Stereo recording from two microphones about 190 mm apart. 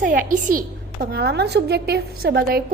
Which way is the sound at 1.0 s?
55° right (ahead or behind).